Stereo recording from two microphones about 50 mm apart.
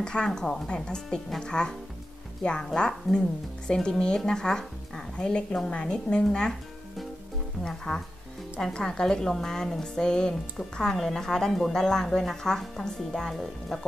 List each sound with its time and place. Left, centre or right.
0.0 s a woman's voice: centre
7.6 s a woman's voice: centre